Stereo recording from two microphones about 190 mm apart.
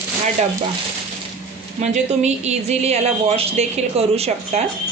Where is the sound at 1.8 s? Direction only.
35° right (ahead or behind).